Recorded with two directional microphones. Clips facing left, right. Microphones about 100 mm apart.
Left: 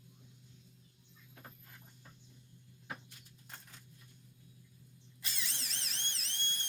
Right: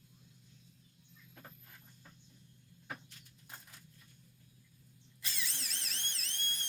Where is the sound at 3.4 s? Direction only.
5° right (ahead or behind).